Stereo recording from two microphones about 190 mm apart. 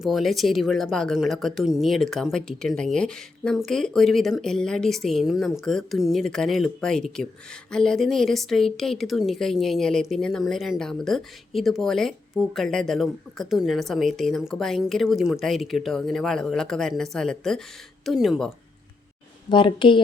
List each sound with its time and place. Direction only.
0.0 s speech: centre (ahead or behind)
19.5 s speech: 25° left (ahead or behind)